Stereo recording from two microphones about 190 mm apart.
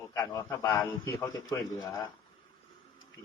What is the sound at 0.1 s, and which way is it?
A man's voice, 15° left (ahead or behind).